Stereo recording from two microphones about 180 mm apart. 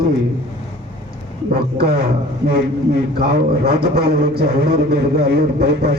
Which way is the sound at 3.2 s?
60° right (ahead or behind).